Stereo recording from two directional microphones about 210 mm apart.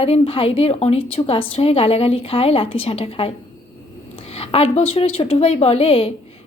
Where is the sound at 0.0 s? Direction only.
25° left (ahead or behind).